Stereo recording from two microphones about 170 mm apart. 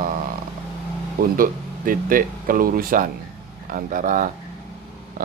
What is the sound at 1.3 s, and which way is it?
Speech, 55° right (ahead or behind).